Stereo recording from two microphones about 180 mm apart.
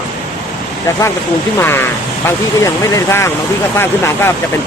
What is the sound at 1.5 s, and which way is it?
Speech, 10° left (ahead or behind).